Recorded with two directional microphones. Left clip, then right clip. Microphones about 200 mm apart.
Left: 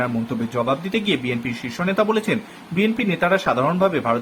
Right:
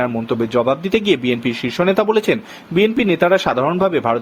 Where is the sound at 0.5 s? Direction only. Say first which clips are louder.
Right 5 dB; 45° right (ahead or behind).